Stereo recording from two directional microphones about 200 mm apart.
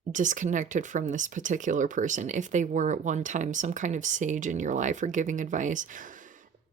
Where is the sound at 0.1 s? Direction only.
40° right (ahead or behind).